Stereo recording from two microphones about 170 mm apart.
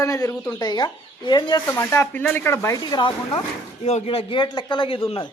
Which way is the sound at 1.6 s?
15° left (ahead or behind).